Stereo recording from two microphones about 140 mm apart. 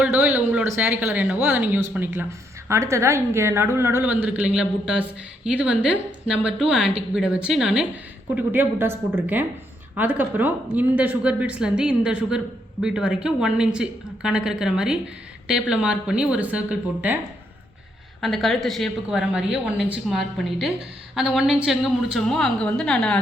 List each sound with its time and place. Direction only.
0.0 s a woman's voice: 10° right (ahead or behind)
18.2 s a woman's voice: centre (ahead or behind)